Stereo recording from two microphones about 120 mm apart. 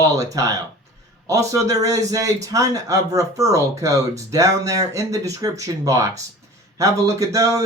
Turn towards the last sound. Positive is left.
turn(degrees=-25)  # may be behind; listen again after turning